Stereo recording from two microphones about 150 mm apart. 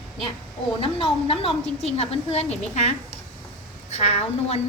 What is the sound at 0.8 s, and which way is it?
A woman's voice, 35° left (ahead or behind).